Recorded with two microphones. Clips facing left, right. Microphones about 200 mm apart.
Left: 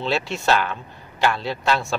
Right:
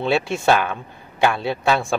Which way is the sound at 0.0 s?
55° right (ahead or behind).